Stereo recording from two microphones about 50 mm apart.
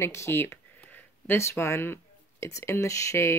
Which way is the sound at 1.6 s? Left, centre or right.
Left.